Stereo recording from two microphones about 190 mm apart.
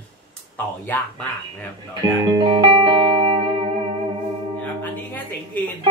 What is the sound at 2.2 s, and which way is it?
Music, 25° right (ahead or behind).